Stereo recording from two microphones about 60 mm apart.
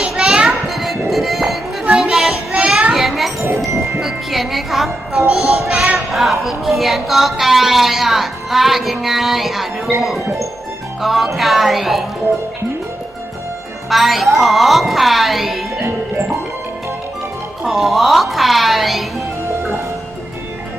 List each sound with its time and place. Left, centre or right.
0.0 s children playing: centre
0.7 s music: centre
2.5 s children playing: centre
4.0 s music: centre
10.0 s speech: centre
13.9 s speech: centre
15.8 s music: right
17.7 s speech: centre